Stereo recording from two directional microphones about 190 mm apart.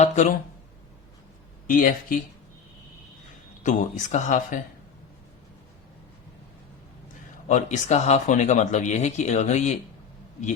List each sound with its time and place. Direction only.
0.0 s speech: 40° left (ahead or behind)
1.6 s speech: 45° left (ahead or behind)
3.6 s speech: 40° left (ahead or behind)
7.4 s speech: 40° left (ahead or behind)